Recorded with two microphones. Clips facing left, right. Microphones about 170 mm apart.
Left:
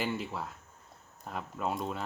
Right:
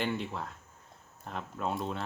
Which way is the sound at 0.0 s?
Centre (ahead or behind).